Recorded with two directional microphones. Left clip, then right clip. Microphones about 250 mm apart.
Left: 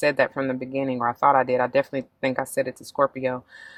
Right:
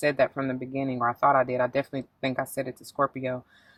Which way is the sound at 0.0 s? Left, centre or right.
Left.